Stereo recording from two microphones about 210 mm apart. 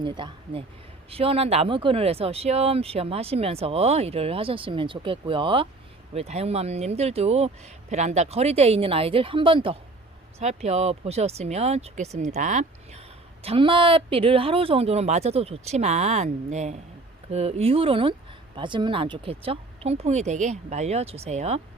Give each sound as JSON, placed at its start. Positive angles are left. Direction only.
{"t": 0.0, "sound": "speech", "side_deg": -20}